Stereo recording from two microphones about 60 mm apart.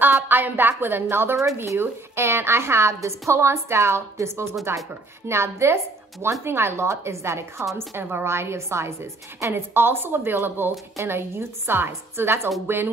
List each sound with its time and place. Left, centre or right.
0.0 s a woman's voice: right